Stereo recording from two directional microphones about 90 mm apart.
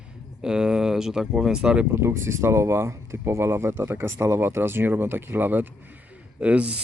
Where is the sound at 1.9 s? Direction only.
30° right (ahead or behind).